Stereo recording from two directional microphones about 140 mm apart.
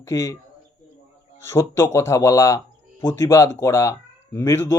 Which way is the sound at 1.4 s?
20° left (ahead or behind).